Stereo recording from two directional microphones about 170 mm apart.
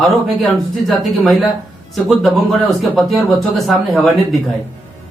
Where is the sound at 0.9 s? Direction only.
Centre (ahead or behind).